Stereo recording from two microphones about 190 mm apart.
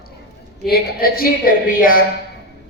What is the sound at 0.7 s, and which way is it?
A man's voice, 50° left (ahead or behind).